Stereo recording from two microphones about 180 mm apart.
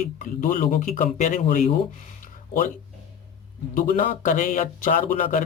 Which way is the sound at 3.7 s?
50° left (ahead or behind).